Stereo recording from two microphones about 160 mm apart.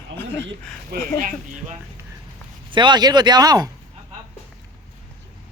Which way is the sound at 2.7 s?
30° right (ahead or behind).